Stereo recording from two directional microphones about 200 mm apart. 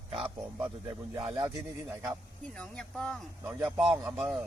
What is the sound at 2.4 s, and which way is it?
Speech, 5° left (ahead or behind).